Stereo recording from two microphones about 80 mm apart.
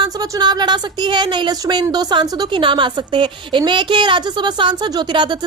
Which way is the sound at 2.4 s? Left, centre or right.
Right.